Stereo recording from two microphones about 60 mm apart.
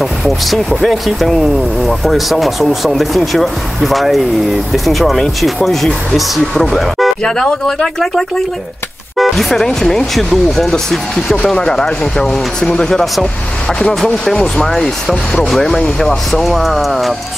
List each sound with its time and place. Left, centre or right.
0.0 s speech: centre
13.7 s speech: centre
14.2 s speech: centre